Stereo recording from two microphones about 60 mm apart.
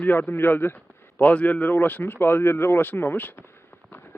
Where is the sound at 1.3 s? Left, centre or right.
Left.